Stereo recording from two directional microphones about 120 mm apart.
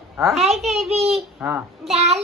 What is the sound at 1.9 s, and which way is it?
Speech, 60° right (ahead or behind).